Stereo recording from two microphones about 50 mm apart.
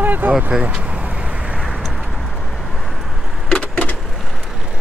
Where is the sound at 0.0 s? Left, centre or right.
Right.